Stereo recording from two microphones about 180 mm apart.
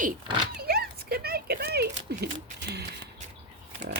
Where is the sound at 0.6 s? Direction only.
60° right (ahead or behind).